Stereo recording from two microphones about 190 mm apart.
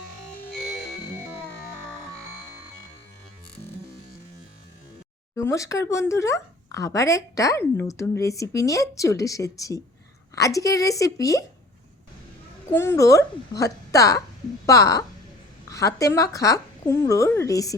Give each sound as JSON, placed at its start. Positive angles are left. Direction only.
{"t": 5.4, "sound": "speech", "side_deg": 15}
{"t": 12.7, "sound": "speech", "side_deg": 15}